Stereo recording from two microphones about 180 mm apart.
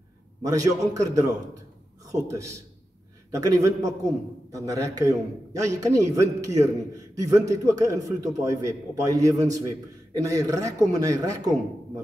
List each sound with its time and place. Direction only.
0.4 s a man's voice: 20° right (ahead or behind)